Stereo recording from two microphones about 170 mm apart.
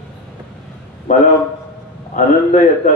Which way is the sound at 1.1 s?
50° left (ahead or behind).